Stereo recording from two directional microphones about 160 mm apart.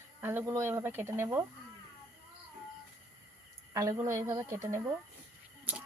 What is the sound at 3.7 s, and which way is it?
Speech, 20° right (ahead or behind).